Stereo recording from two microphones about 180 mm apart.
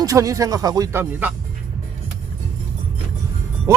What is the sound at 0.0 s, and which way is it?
A man's voice, 20° right (ahead or behind).